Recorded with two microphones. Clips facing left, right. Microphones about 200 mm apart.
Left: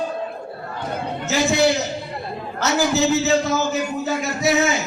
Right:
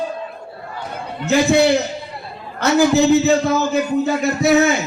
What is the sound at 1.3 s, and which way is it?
Speech, 60° right (ahead or behind).